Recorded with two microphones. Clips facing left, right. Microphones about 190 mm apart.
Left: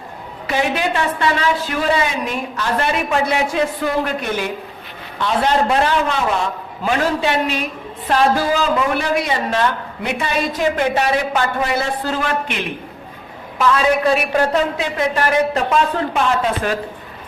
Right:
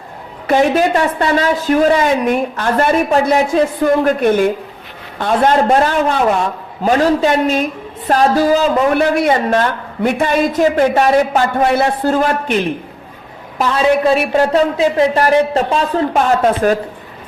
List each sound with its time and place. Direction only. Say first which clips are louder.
0.4 s a man's voice: right 7 dB; 45° right (ahead or behind)
14.0 s speech: right 4 dB; 30° right (ahead or behind)